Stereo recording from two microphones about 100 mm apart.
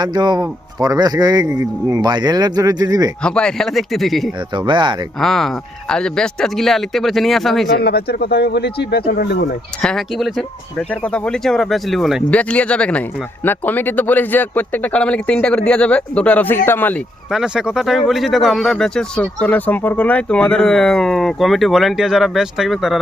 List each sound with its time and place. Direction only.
0.0 s speech: 45° right (ahead or behind)
3.2 s speech: 10° left (ahead or behind)
4.5 s speech: 50° right (ahead or behind)
5.2 s speech: 5° left (ahead or behind)
9.8 s speech: 5° left (ahead or behind)
12.3 s speech: 15° left (ahead or behind)
17.3 s speech: 5° right (ahead or behind)